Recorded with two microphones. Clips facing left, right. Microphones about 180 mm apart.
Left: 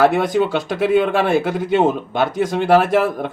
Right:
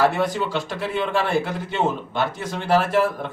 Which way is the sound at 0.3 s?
55° left (ahead or behind).